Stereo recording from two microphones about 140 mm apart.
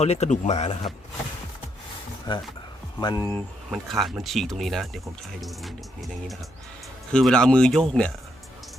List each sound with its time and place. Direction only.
0.0 s speech: 50° left (ahead or behind)
2.3 s speech: 35° left (ahead or behind)
3.7 s speech: centre (ahead or behind)